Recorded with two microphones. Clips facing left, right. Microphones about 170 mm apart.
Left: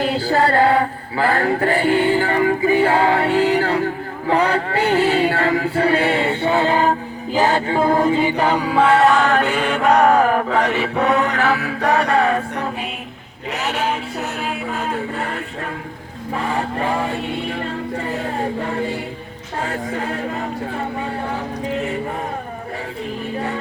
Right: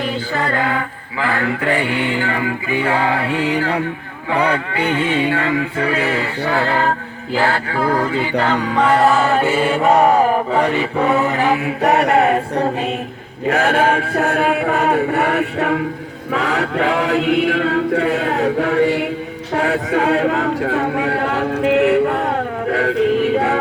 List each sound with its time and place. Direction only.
0.0 s mantra: 35° left (ahead or behind); by 6.9 s 15° left (ahead or behind)
7.3 s music: 20° left (ahead or behind); by 11.4 s 5° right (ahead or behind)
11.4 s music: 20° right (ahead or behind)
13.5 s chant: 55° right (ahead or behind); by 19.0 s 85° right
19.5 s a sound: 85° right